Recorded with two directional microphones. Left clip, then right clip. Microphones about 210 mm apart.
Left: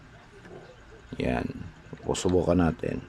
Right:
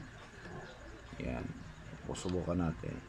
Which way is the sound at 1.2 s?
50° left (ahead or behind).